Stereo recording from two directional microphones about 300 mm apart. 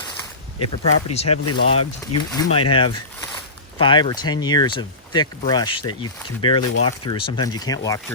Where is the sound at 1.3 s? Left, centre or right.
Left.